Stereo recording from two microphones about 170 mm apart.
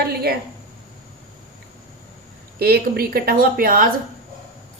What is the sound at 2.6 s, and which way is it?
Speech, 65° right (ahead or behind).